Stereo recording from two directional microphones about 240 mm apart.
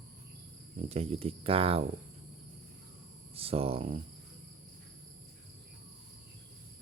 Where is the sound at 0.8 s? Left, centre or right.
Right.